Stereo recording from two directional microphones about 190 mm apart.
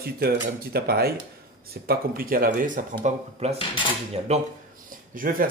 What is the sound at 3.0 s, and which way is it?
Speech, 35° right (ahead or behind).